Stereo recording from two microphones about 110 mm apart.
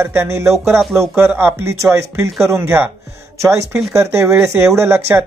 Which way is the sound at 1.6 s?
25° right (ahead or behind).